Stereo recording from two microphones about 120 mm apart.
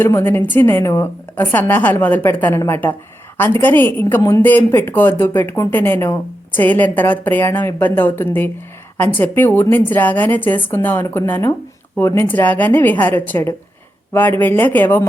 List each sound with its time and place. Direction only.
0.0 s a woman's voice: 20° left (ahead or behind)